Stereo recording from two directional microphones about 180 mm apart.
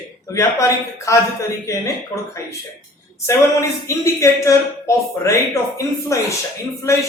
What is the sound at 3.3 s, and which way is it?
A man's voice, 15° left (ahead or behind).